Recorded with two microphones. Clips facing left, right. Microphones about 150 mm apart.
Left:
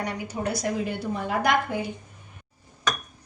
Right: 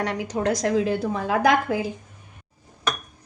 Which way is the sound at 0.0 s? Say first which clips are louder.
Right 5 dB; 90° right.